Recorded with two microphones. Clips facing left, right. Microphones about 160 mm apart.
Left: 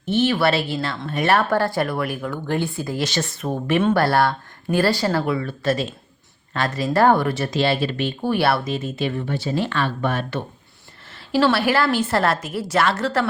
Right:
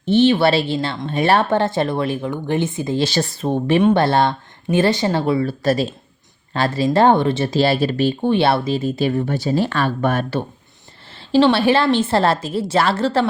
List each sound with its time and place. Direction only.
0.0 s speech: 30° right (ahead or behind)
8.2 s speech: 25° right (ahead or behind); by 10.2 s 45° right (ahead or behind)
11.3 s speech: 25° right (ahead or behind)